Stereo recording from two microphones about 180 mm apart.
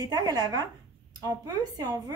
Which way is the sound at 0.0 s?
20° right (ahead or behind).